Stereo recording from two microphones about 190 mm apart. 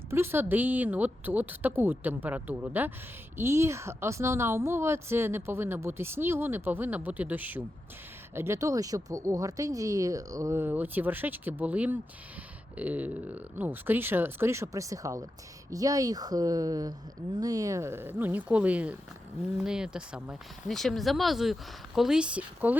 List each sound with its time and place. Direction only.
0.1 s a woman's voice: 10° right (ahead or behind)